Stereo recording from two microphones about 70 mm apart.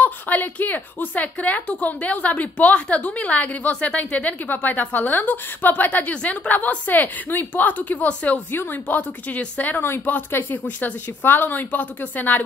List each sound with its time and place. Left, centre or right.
0.0 s a woman's voice: left